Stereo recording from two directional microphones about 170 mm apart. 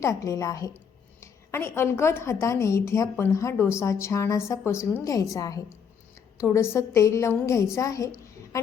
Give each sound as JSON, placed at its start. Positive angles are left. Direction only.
{"t": 0.0, "sound": "a woman's voice", "side_deg": 20}